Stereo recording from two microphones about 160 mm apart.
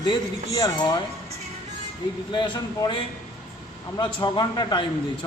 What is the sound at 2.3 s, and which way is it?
A man's voice, 30° left (ahead or behind).